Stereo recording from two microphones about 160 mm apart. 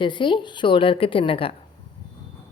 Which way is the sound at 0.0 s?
30° left (ahead or behind).